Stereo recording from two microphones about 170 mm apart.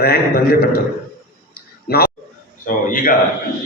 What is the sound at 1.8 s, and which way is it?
Speech, 65° left (ahead or behind).